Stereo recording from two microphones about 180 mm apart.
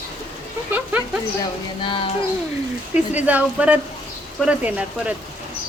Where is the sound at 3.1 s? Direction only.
10° right (ahead or behind).